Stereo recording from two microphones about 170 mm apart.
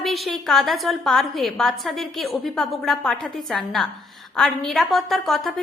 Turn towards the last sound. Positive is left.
turn(degrees=0)  # may be behind; listen again after turning